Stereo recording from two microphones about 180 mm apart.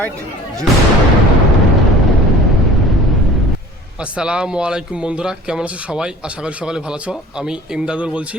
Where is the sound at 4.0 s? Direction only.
5° right (ahead or behind).